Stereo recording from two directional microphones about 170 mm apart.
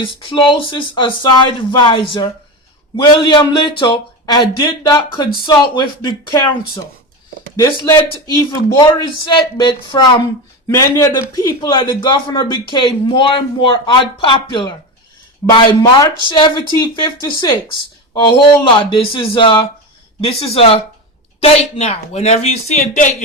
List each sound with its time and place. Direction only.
0.0 s a man's voice: 30° left (ahead or behind)
7.5 s a man's voice: 20° left (ahead or behind)
10.7 s a man's voice: 15° left (ahead or behind)
18.6 s a man's voice: 30° left (ahead or behind)